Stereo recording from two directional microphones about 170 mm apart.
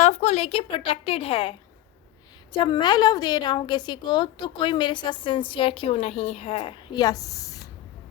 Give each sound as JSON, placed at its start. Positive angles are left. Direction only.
{"t": 0.0, "sound": "a woman's voice", "side_deg": 40}